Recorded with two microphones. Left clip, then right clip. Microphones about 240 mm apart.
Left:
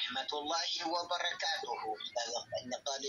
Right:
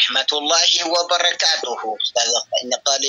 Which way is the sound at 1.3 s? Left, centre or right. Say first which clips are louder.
Right 17 dB; right.